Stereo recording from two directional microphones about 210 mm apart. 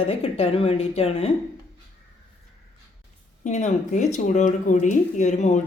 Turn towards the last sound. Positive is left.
turn(degrees=35)  # may be behind; listen again after turning